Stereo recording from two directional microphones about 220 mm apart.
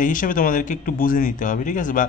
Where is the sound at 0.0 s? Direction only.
35° left (ahead or behind).